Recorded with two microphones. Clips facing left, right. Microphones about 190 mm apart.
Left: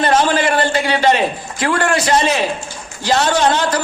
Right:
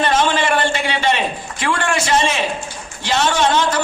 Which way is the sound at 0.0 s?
40° left (ahead or behind).